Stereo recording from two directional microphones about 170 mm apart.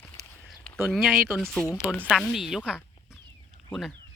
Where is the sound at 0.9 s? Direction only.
Centre (ahead or behind).